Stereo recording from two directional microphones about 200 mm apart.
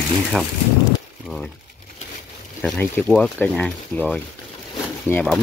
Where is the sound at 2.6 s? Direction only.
5° left (ahead or behind).